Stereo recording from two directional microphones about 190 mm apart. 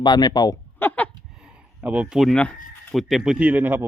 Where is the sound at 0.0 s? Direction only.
20° left (ahead or behind).